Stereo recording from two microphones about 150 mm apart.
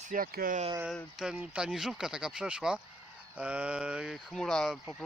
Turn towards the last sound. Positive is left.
turn(degrees=0)  # may be behind; listen again after turning